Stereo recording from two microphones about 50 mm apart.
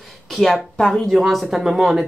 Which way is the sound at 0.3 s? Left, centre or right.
Centre.